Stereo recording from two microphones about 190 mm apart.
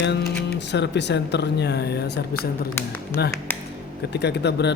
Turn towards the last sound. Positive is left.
turn(degrees=60)  # may be behind; listen again after turning